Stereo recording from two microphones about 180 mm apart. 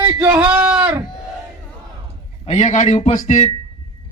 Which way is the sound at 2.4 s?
40° left (ahead or behind).